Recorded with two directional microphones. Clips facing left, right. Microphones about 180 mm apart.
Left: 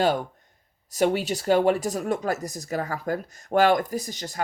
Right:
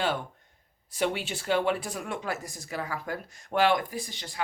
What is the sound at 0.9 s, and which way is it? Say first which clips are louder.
Speech: left 7 dB; 40° left (ahead or behind).